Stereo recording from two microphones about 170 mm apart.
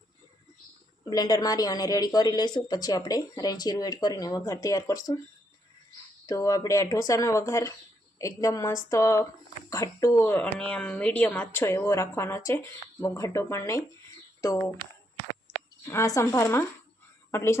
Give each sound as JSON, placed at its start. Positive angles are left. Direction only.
{"t": 1.1, "sound": "speech", "side_deg": 20}
{"t": 6.2, "sound": "speech", "side_deg": 20}
{"t": 15.8, "sound": "speech", "side_deg": 20}